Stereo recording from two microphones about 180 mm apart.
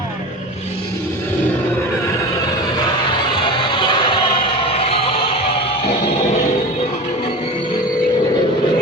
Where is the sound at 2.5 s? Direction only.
20° left (ahead or behind).